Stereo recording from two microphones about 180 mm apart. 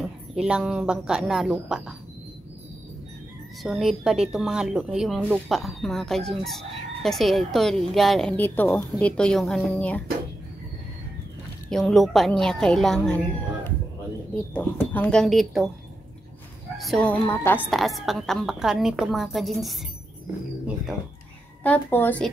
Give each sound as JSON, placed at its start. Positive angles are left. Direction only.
{"t": 0.0, "sound": "a woman's voice", "side_deg": -5}
{"t": 3.6, "sound": "speech", "side_deg": 0}
{"t": 11.7, "sound": "speech", "side_deg": 0}
{"t": 14.5, "sound": "speech", "side_deg": 10}
{"t": 16.7, "sound": "a woman's voice", "side_deg": 0}
{"t": 17.7, "sound": "speech", "side_deg": 0}
{"t": 21.6, "sound": "a woman's voice", "side_deg": 10}